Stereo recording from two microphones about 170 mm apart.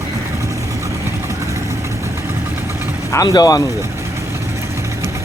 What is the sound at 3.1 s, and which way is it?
Speech, 25° left (ahead or behind).